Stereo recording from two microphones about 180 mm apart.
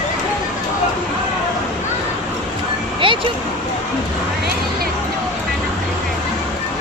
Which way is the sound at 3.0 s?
30° right (ahead or behind).